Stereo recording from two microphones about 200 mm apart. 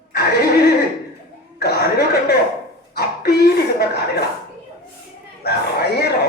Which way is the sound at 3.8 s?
55° left (ahead or behind).